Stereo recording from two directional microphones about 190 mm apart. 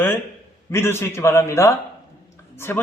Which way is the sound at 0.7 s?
15° left (ahead or behind).